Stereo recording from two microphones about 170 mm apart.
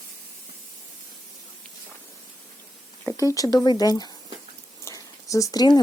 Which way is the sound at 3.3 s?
20° left (ahead or behind).